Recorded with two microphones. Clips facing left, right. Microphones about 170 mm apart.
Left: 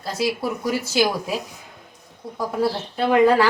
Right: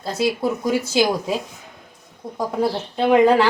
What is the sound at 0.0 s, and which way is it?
A woman's voice, 20° right (ahead or behind).